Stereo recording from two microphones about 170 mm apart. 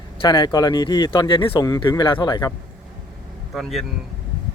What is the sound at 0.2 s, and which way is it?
Speech, 25° left (ahead or behind).